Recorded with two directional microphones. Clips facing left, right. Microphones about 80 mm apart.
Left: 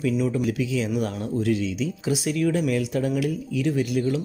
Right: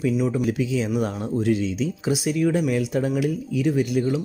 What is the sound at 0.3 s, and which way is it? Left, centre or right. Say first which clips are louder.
Speech: right 2 dB; right.